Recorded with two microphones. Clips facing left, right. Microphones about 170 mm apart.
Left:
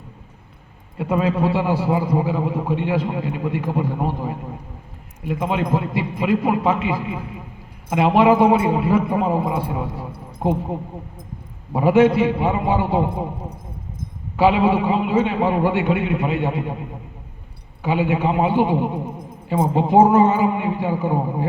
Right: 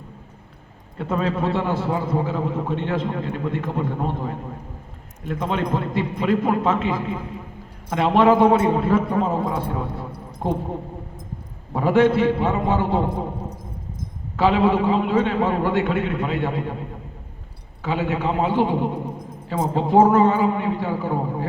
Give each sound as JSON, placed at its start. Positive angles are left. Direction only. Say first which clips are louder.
{"t": 0.9, "sound": "a man's voice", "louder": "left 3 dB", "side_deg": 10}
{"t": 11.7, "sound": "a man's voice", "louder": "left 2 dB", "side_deg": 15}
{"t": 14.3, "sound": "a man's voice", "louder": "left 2 dB", "side_deg": 15}
{"t": 17.8, "sound": "a man's voice", "louder": "left 3 dB", "side_deg": 15}